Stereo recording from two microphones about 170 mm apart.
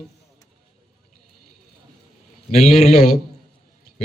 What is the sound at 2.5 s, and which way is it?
Speech, 40° left (ahead or behind).